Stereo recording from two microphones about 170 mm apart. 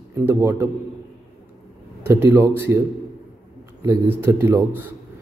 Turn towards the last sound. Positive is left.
turn(degrees=-10)  # may be behind; listen again after turning